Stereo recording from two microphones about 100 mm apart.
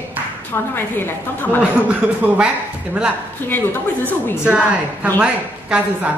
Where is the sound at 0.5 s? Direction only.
20° left (ahead or behind).